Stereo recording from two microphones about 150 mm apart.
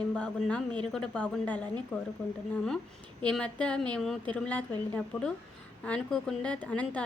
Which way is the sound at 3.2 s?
5° left (ahead or behind).